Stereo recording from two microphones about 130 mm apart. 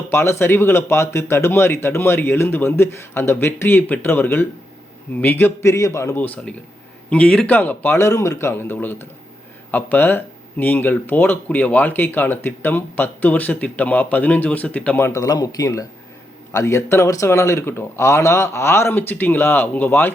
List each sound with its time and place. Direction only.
0.1 s speech: 20° left (ahead or behind)
15.0 s speech: 25° left (ahead or behind)